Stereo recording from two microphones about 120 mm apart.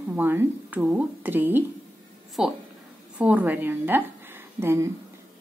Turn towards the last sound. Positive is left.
turn(degrees=-20)  # may be behind; listen again after turning